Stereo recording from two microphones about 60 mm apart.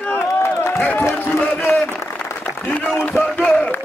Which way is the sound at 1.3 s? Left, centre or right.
Left.